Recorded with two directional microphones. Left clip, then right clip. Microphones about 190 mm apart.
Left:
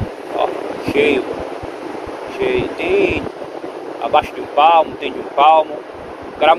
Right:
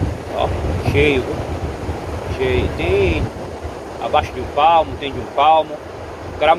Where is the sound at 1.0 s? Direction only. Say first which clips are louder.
Left 1 dB; 10° left (ahead or behind).